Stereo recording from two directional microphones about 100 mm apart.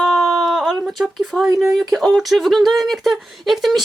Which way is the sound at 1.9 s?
Centre (ahead or behind).